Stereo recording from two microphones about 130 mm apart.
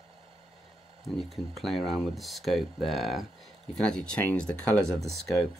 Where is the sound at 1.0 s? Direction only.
Centre (ahead or behind).